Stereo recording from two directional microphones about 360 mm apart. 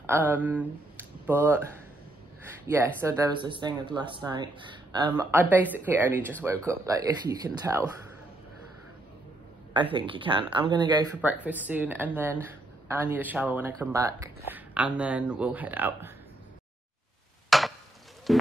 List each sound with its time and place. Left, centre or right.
0.0 s speech: centre
2.6 s speech: centre
9.8 s speech: centre
17.5 s a sound: centre
18.3 s music: centre